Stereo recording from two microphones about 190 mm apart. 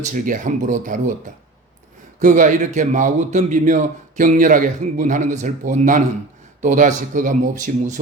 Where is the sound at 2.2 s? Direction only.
40° right (ahead or behind).